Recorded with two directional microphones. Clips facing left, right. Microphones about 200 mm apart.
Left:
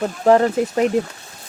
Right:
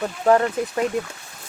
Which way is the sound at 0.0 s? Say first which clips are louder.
Left 3 dB; 30° left (ahead or behind).